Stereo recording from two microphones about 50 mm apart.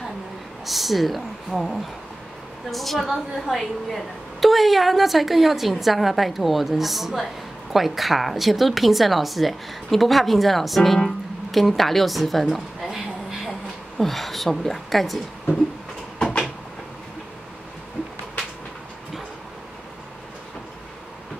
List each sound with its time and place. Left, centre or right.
0.7 s a woman's voice: centre
16.2 s cupboard open or close: centre